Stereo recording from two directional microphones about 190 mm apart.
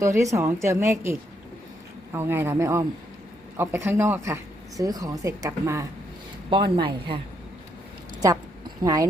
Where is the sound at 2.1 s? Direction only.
10° right (ahead or behind).